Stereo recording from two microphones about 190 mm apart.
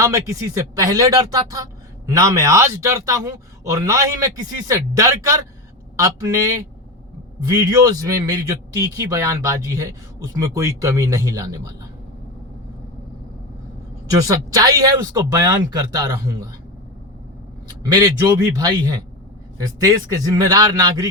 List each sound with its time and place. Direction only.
0.0 s speech: 15° right (ahead or behind)
14.3 s speech: 20° right (ahead or behind)
17.7 s speech: 20° right (ahead or behind)